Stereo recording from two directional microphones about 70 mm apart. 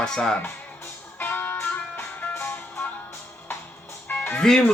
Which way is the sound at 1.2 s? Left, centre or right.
Left.